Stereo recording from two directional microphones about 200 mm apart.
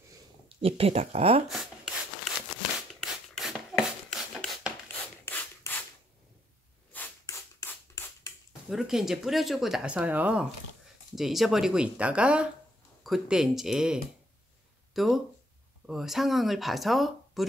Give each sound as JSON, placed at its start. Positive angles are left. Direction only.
{"t": 0.6, "sound": "speech", "side_deg": -30}
{"t": 1.5, "sound": "writing", "side_deg": 0}
{"t": 2.9, "sound": "a sound", "side_deg": 0}
{"t": 4.8, "sound": "rub", "side_deg": 10}
{"t": 6.9, "sound": "a sound", "side_deg": 10}
{"t": 8.6, "sound": "speech", "side_deg": 0}
{"t": 15.0, "sound": "speech", "side_deg": 0}